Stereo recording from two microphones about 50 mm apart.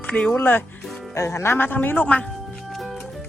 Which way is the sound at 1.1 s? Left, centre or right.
Left.